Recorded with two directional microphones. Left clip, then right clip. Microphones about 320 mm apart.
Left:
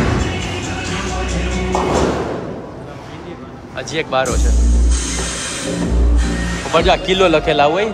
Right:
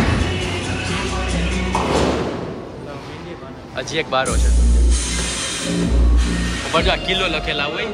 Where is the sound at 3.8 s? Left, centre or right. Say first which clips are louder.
Left 2 dB; centre.